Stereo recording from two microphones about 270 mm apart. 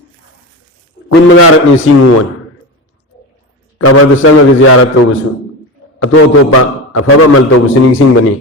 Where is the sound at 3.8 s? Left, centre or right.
Left.